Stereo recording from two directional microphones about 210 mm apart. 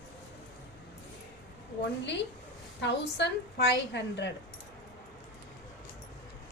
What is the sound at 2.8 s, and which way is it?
A woman's voice, 55° left (ahead or behind).